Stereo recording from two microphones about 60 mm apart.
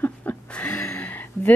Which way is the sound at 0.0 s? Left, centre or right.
Left.